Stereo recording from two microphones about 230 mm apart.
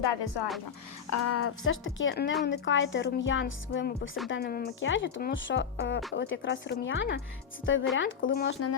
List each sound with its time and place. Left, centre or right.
1.2 s a woman's voice: left
4.3 s a woman's voice: left